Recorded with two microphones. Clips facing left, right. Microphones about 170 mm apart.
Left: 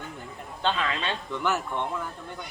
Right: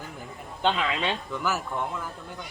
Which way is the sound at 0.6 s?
15° right (ahead or behind).